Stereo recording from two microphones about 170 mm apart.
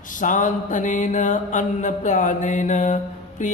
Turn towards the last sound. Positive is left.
turn(degrees=45)  # may be behind; listen again after turning